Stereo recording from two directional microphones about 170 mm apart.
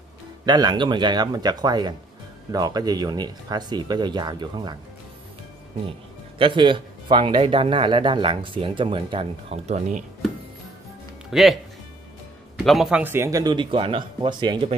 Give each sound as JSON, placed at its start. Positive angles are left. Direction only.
{"t": 0.5, "sound": "speech", "side_deg": -25}
{"t": 5.9, "sound": "speech", "side_deg": -30}
{"t": 11.2, "sound": "speech", "side_deg": 0}
{"t": 12.6, "sound": "speech", "side_deg": 0}